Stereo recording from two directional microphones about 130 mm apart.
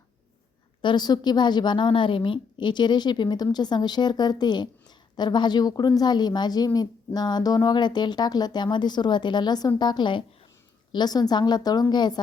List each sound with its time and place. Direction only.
0.8 s a woman's voice: 35° left (ahead or behind)